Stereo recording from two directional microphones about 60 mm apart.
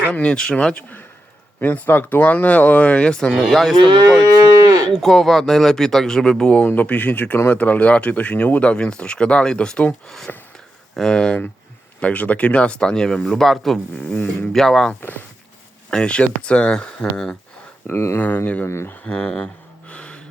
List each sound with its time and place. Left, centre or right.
0.1 s speech: centre
0.7 s speech: left; by 3.8 s centre
4.2 s moo: right
4.9 s speech: centre
6.7 s speech: left
10.3 s a sound: left
10.9 s speech: centre
17.8 s speech: left
18.2 s speech: left
19.0 s speech: centre
19.9 s gasp: centre